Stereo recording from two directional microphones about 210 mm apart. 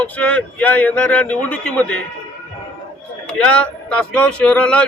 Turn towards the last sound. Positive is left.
turn(degrees=5)  # may be behind; listen again after turning